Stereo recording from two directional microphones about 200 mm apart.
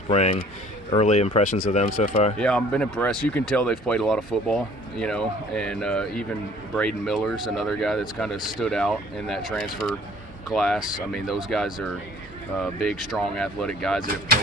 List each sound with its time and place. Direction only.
0.1 s speech: 30° left (ahead or behind)
2.3 s speech: 5° left (ahead or behind)